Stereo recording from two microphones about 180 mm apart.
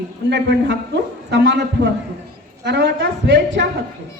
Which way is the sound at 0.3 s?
75° right (ahead or behind).